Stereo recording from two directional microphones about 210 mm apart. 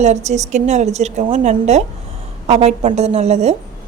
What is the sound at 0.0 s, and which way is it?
A woman's voice, 30° right (ahead or behind).